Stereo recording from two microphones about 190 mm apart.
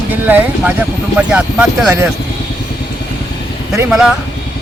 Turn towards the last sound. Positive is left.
turn(degrees=-5)  # may be behind; listen again after turning